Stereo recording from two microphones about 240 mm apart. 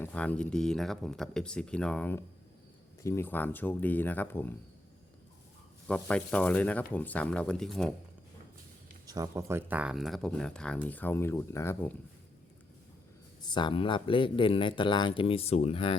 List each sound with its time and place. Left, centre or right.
0.0 s speech: centre
5.9 s speech: centre
9.0 s speech: centre
13.4 s speech: centre